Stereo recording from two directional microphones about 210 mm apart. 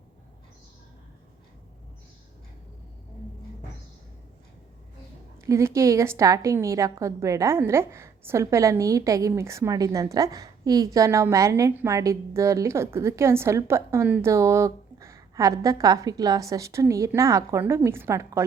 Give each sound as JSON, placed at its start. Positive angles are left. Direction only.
{"t": 5.5, "sound": "a woman's voice", "side_deg": -15}